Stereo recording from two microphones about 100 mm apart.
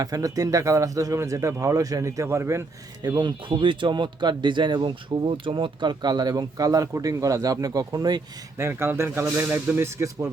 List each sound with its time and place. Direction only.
0.0 s speech: 35° right (ahead or behind)
3.0 s speech: 45° right (ahead or behind)
8.5 s speech: 25° right (ahead or behind)